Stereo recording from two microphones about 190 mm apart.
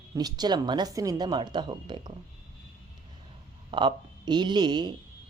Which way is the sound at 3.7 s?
25° right (ahead or behind).